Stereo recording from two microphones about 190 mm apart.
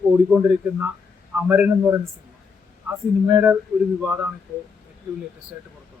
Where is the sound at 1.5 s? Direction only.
10° right (ahead or behind).